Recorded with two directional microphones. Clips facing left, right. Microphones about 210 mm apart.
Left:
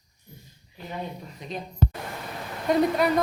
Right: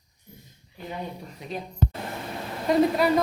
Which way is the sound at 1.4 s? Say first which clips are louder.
Right 1 dB; 5° right (ahead or behind).